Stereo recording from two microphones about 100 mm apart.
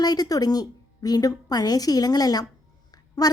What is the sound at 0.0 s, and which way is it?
A woman's voice, 40° left (ahead or behind).